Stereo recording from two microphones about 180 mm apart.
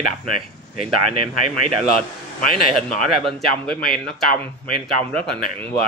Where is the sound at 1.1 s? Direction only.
35° right (ahead or behind).